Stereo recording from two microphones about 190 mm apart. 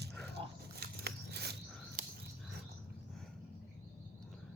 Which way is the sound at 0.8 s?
55° right (ahead or behind).